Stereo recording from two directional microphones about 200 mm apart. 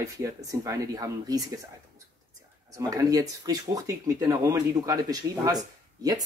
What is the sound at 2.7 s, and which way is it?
A woman's voice, 15° right (ahead or behind).